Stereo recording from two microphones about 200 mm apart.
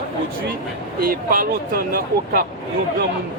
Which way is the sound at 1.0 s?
45° right (ahead or behind).